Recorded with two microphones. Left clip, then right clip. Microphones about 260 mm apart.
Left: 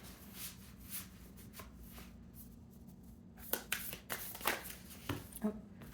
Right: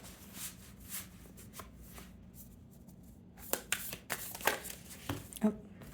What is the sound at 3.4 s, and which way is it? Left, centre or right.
Shuffling cards, right.